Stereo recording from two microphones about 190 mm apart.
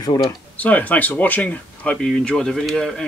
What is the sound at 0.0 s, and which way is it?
Speech, 20° left (ahead or behind).